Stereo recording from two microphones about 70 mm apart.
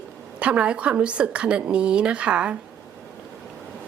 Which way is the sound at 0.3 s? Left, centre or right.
Centre.